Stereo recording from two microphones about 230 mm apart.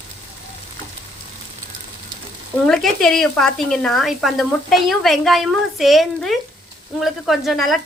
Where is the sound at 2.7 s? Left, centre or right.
Centre.